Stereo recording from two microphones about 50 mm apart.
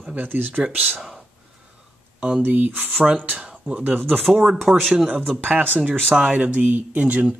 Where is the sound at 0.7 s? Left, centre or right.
Right.